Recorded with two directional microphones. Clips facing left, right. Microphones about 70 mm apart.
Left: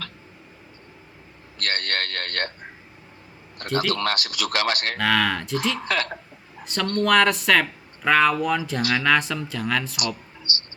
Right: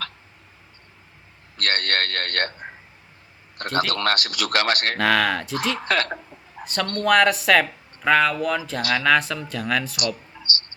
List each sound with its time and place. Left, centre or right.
1.5 s a sound: right
3.6 s speech: right
4.9 s speech: centre
5.5 s speech: right
7.0 s speech: centre